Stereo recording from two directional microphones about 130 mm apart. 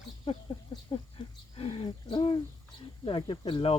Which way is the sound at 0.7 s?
40° left (ahead or behind).